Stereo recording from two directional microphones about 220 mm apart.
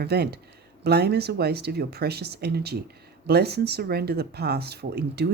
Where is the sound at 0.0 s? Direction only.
45° right (ahead or behind).